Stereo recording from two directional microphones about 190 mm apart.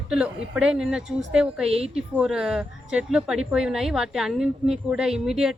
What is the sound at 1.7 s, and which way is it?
Speech, 30° right (ahead or behind).